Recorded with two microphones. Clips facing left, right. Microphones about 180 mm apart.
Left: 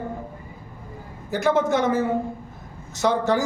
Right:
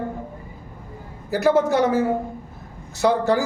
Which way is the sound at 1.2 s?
5° right (ahead or behind).